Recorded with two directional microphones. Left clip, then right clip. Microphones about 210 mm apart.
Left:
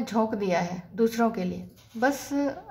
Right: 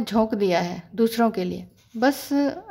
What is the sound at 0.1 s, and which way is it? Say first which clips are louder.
Speech: right 4 dB; 40° right (ahead or behind).